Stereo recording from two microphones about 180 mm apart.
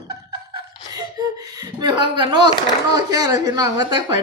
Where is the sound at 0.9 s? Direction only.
20° right (ahead or behind).